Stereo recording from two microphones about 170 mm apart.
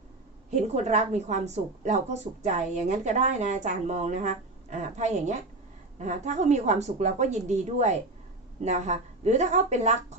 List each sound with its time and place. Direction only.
0.5 s a woman's voice: 40° right (ahead or behind)